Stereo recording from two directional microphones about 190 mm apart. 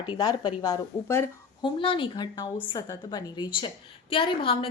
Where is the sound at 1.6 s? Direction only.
25° left (ahead or behind).